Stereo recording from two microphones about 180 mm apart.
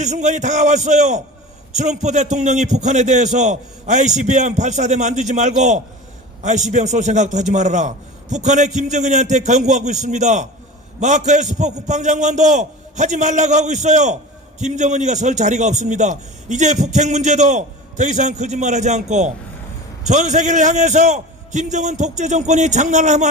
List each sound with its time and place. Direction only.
0.0 s a man's voice: 40° right (ahead or behind)